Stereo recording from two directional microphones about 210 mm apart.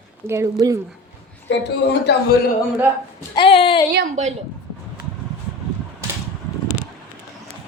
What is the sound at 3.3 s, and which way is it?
Speech, 25° left (ahead or behind).